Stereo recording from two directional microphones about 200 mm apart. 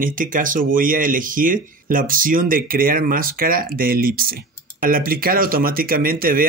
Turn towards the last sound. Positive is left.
turn(degrees=-45)  # may be behind; listen again after turning